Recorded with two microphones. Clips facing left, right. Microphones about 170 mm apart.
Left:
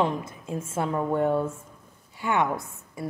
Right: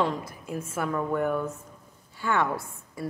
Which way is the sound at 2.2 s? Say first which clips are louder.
Left 1 dB; 20° left (ahead or behind).